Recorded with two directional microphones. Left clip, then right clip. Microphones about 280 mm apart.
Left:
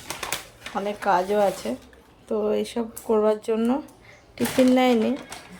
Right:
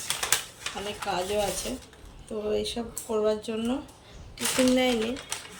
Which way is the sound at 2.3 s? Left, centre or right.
Centre.